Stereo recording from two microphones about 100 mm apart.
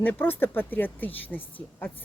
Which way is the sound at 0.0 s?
20° left (ahead or behind).